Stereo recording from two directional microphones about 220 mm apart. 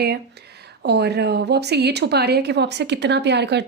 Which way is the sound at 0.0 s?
45° right (ahead or behind).